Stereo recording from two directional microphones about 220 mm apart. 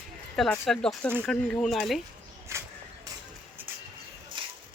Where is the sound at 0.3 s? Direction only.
Centre (ahead or behind).